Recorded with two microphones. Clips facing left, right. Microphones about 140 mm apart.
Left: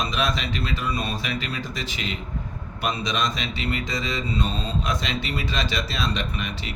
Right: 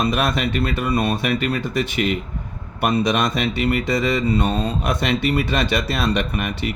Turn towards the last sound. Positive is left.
turn(degrees=-55)  # may be behind; listen again after turning